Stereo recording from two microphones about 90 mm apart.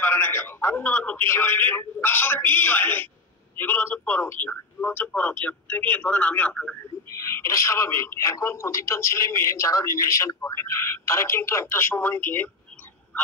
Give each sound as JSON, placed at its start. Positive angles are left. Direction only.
{"t": 0.0, "sound": "a man's voice", "side_deg": 25}
{"t": 7.1, "sound": "speech", "side_deg": 35}